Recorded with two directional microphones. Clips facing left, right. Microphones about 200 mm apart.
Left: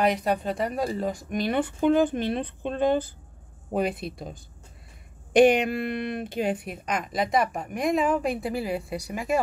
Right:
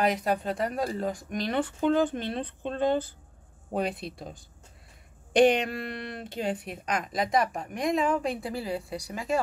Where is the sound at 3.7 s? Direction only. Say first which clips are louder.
Left 3 dB; 5° left (ahead or behind).